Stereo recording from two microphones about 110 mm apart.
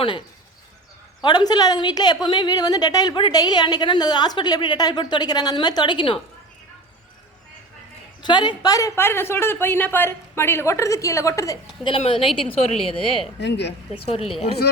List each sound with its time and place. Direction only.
0.0 s a woman's voice: 45° left (ahead or behind)
8.2 s a woman's voice: 45° left (ahead or behind)
9.0 s speech: 20° left (ahead or behind)
11.9 s a woman's voice: 55° left (ahead or behind)